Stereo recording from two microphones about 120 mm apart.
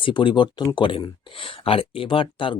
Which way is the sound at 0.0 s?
40° left (ahead or behind).